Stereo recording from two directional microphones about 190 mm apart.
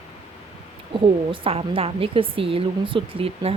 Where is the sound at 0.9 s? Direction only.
30° right (ahead or behind).